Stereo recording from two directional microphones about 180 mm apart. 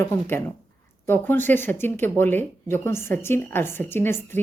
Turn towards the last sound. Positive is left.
turn(degrees=10)  # may be behind; listen again after turning